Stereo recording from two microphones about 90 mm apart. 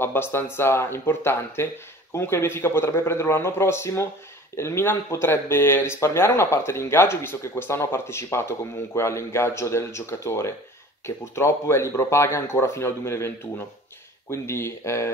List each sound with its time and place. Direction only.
0.0 s speech: 25° left (ahead or behind)
14.3 s speech: 30° left (ahead or behind)